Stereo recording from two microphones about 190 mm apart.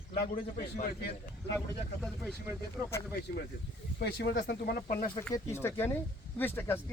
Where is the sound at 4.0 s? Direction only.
70° left (ahead or behind).